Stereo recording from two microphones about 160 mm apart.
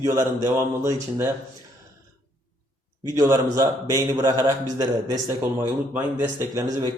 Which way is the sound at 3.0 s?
20° right (ahead or behind).